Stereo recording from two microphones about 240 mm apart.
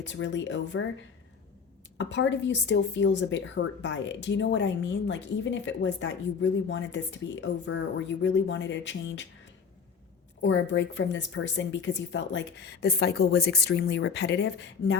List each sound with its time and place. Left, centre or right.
0.0 s a woman's voice: left
2.0 s a woman's voice: left
10.4 s a woman's voice: left